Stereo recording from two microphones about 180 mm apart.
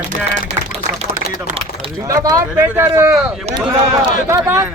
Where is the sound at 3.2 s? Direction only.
Centre (ahead or behind).